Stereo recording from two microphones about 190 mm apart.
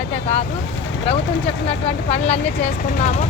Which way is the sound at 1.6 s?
30° left (ahead or behind).